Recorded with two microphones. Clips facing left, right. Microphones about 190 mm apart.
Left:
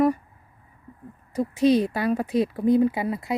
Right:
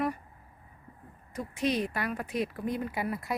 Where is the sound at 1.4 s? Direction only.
30° left (ahead or behind).